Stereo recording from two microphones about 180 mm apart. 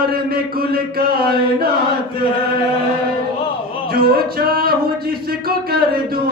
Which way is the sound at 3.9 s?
55° right (ahead or behind).